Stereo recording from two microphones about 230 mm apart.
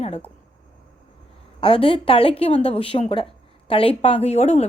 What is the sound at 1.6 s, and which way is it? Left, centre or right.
A woman's voice, left.